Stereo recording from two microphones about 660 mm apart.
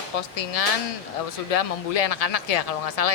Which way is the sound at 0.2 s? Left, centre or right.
Left.